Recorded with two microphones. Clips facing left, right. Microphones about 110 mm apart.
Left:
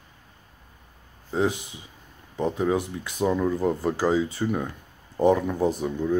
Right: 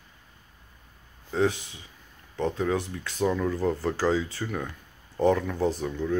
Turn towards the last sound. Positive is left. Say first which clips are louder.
# left 3 dB
turn(degrees=15)  # may be behind; listen again after turning